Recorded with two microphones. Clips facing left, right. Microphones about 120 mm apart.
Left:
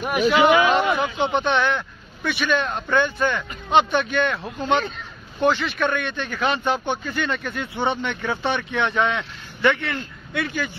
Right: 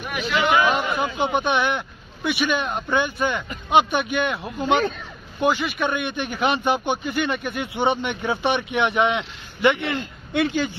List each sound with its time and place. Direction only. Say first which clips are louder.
0.0 s speech: left 6 dB; 45° left (ahead or behind)
0.9 s speech: left 1 dB; 10° right (ahead or behind)